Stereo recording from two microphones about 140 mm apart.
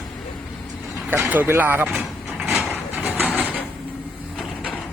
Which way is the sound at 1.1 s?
10° right (ahead or behind).